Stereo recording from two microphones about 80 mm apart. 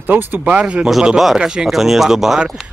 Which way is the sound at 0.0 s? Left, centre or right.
Right.